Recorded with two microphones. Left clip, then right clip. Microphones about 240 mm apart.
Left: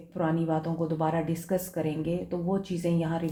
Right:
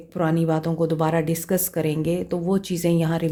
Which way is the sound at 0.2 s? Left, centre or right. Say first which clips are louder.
Right 6 dB; right.